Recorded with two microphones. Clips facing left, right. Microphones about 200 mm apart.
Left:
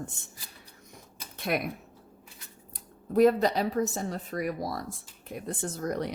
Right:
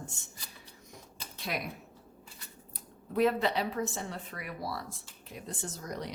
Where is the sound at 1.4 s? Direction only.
55° left (ahead or behind).